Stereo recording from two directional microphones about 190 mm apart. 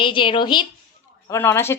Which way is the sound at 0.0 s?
25° left (ahead or behind).